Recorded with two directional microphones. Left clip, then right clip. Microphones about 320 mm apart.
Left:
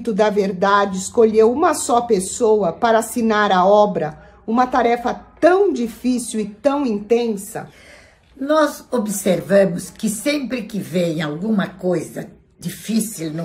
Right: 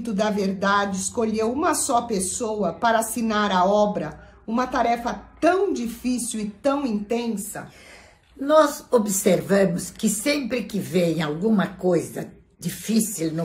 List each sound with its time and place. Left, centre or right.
0.0 s speech: left
8.5 s a woman's voice: centre